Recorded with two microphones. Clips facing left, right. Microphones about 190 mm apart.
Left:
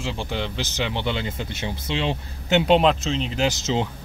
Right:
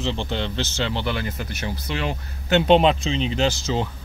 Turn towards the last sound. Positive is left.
turn(degrees=20)  # may be behind; listen again after turning